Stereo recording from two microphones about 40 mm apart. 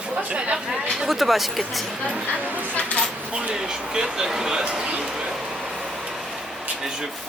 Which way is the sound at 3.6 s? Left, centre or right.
Centre.